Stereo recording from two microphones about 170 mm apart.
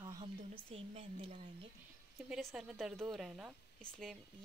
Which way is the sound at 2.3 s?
Centre (ahead or behind).